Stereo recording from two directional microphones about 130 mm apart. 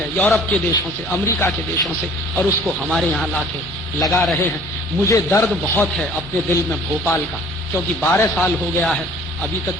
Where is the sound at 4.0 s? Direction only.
20° left (ahead or behind).